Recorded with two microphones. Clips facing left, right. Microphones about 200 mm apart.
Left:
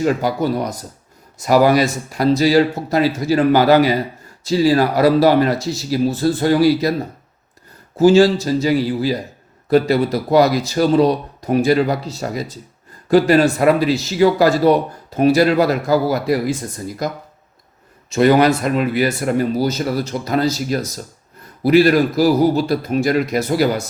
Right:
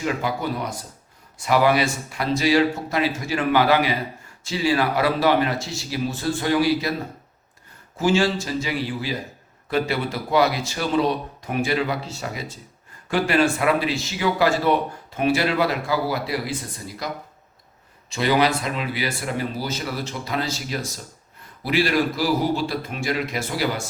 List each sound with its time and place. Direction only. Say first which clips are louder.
0.0 s speech: left 7 dB; 40° left (ahead or behind)
7.9 s speech: left 9 dB; 40° left (ahead or behind)
18.1 s speech: left 8 dB; 45° left (ahead or behind)